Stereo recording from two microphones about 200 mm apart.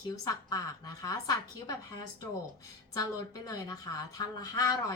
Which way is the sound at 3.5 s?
15° left (ahead or behind).